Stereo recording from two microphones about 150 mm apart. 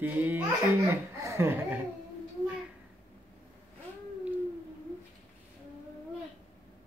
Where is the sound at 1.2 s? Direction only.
15° right (ahead or behind).